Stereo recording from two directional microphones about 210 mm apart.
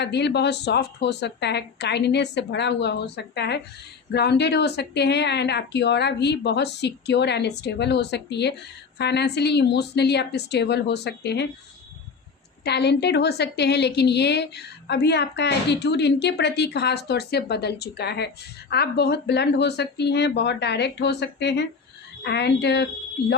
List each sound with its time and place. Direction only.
0.0 s a woman's voice: 55° left (ahead or behind)
12.6 s a woman's voice: 55° left (ahead or behind)